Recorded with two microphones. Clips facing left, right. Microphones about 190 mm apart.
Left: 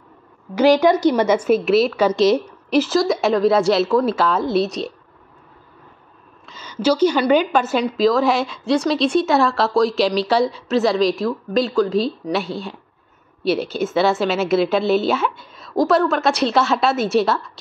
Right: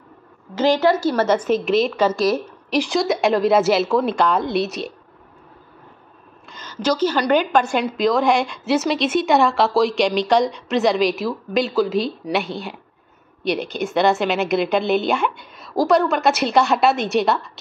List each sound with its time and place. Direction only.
0.6 s a woman's voice: 10° left (ahead or behind)
2.0 s a woman's voice: 20° left (ahead or behind)
2.7 s a woman's voice: 5° left (ahead or behind)
6.4 s a woman's voice: 5° left (ahead or behind)